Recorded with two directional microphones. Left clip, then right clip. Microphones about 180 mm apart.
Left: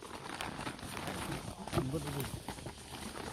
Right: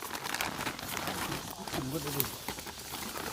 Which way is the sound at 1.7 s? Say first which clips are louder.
Left 1 dB; 15° left (ahead or behind).